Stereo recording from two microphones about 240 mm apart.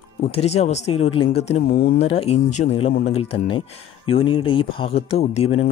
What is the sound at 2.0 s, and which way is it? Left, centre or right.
Speech, left.